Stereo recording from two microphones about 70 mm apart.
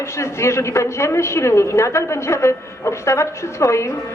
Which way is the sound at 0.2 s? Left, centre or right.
Left.